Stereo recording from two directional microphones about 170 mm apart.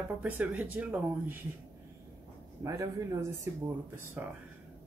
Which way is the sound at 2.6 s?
20° right (ahead or behind).